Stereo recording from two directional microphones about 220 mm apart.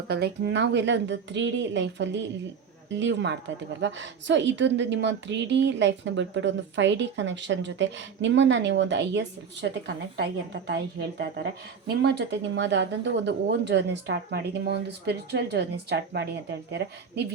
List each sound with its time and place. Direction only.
0.1 s a woman's voice: 50° right (ahead or behind)